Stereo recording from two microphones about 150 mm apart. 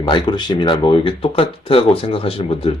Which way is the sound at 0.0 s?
30° left (ahead or behind).